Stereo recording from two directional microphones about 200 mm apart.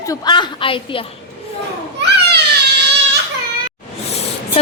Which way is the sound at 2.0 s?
55° right (ahead or behind).